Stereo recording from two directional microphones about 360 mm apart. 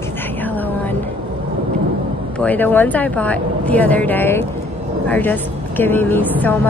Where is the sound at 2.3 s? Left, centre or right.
Centre.